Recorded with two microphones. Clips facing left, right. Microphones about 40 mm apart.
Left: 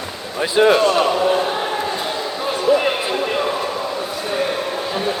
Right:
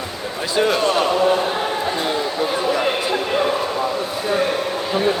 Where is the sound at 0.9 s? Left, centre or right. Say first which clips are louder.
Even; centre.